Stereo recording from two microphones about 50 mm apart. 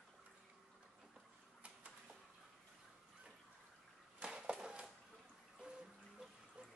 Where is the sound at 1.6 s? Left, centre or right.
Right.